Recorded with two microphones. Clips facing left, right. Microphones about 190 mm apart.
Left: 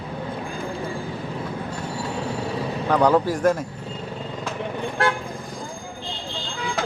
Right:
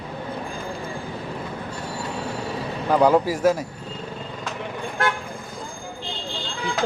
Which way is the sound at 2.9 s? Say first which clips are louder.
Right 1 dB; 10° right (ahead or behind).